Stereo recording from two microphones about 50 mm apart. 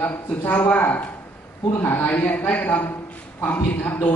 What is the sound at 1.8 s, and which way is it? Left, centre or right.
A woman's voice, left.